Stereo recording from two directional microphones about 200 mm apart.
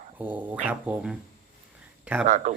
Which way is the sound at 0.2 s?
10° right (ahead or behind).